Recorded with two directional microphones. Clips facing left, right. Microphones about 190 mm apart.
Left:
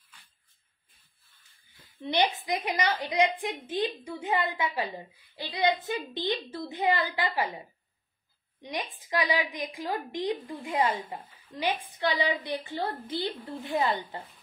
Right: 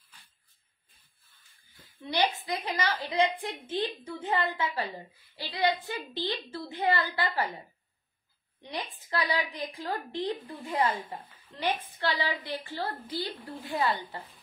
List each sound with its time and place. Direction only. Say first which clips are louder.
2.0 s a woman's voice: left 2 dB; 20° left (ahead or behind)
8.6 s a woman's voice: left 2 dB; 15° left (ahead or behind)